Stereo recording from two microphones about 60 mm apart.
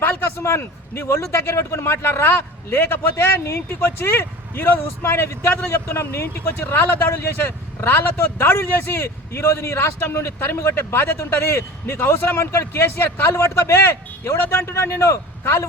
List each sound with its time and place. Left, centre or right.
0.0 s a man's voice: left
13.2 s a man's voice: left